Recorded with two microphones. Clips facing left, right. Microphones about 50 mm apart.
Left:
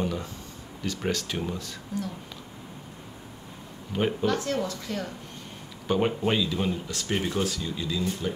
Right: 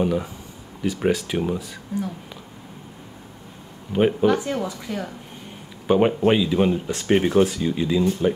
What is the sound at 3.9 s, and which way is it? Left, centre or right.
Speech, centre.